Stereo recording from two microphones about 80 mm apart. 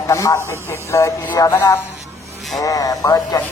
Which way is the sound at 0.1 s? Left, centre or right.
Left.